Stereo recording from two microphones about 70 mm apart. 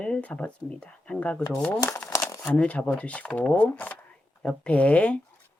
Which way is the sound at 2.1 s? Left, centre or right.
Left.